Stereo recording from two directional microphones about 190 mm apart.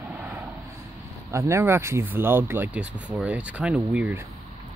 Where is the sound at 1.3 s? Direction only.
15° right (ahead or behind).